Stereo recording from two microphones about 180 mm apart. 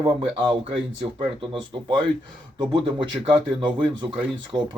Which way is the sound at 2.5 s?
25° right (ahead or behind).